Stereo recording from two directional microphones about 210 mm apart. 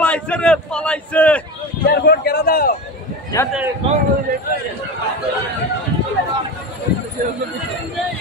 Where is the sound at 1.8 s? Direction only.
50° left (ahead or behind).